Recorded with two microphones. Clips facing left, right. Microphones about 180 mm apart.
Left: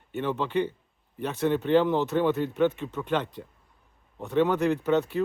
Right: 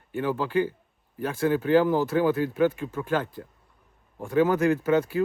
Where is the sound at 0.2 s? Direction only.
5° right (ahead or behind).